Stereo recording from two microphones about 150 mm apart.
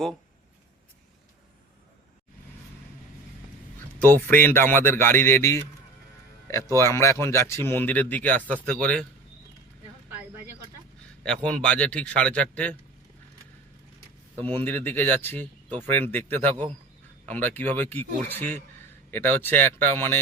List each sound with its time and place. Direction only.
4.0 s speech: 15° left (ahead or behind)
6.7 s speech: 20° left (ahead or behind)
11.6 s speech: 5° left (ahead or behind)
14.4 s speech: 15° left (ahead or behind)